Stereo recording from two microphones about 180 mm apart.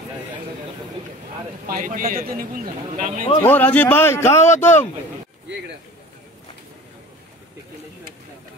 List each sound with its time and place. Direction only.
1.7 s a man's voice: 50° right (ahead or behind)
3.3 s a man's voice: 10° left (ahead or behind)